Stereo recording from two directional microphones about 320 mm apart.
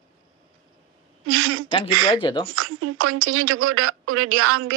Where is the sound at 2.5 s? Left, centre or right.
Right.